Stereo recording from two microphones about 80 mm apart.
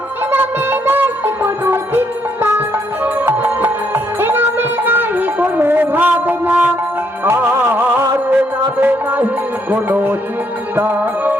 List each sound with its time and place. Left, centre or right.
0.3 s music: right